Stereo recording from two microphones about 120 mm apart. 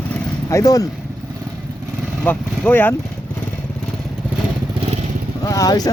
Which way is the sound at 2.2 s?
15° left (ahead or behind).